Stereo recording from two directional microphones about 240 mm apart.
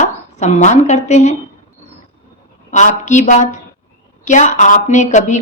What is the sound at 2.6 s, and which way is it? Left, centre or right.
A woman's voice, left.